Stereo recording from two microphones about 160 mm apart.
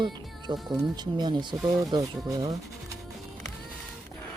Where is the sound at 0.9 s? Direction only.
25° right (ahead or behind).